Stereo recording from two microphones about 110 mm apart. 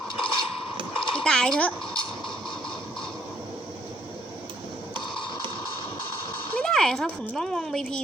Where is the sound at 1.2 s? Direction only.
5° left (ahead or behind).